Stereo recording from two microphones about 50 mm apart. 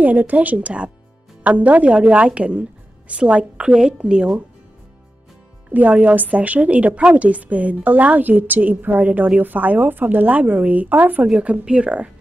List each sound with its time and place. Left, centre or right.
0.0 s a woman's voice: right; by 4.3 s centre
5.7 s a woman's voice: right
11.2 s a woman's voice: right